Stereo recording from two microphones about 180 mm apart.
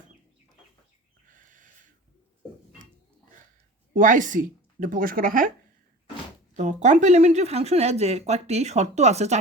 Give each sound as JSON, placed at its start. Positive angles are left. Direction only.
{"t": 1.3, "sound": "a sound", "side_deg": -45}
{"t": 3.9, "sound": "speech", "side_deg": -45}
{"t": 6.6, "sound": "speech", "side_deg": -40}